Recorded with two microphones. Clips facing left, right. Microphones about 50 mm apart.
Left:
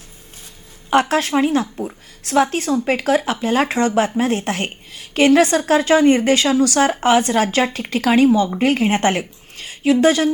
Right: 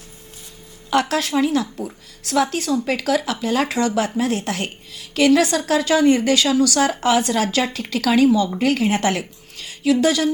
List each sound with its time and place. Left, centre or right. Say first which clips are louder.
0.9 s a woman's voice: left 3 dB; left